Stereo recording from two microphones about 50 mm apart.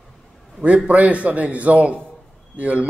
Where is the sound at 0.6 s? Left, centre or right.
Right.